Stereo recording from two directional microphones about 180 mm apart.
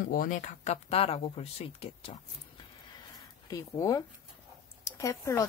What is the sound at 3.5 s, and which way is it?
Speech, 20° left (ahead or behind).